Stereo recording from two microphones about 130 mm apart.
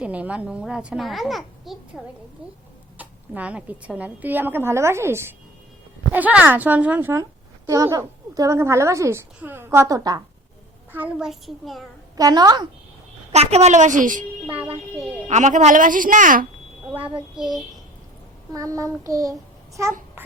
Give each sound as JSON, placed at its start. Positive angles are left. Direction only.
{"t": 0.0, "sound": "a child's voice", "side_deg": -10}
{"t": 3.0, "sound": "a woman's voice", "side_deg": -10}
{"t": 7.7, "sound": "a woman's voice", "side_deg": -25}
{"t": 10.9, "sound": "a child's voice", "side_deg": -10}
{"t": 12.1, "sound": "a woman's voice", "side_deg": -30}
{"t": 13.3, "sound": "a woman's voice", "side_deg": -55}
{"t": 14.4, "sound": "a woman's voice", "side_deg": -15}
{"t": 15.3, "sound": "a woman's voice", "side_deg": -70}
{"t": 16.9, "sound": "a child's voice", "side_deg": -40}
{"t": 18.5, "sound": "a child's voice", "side_deg": -25}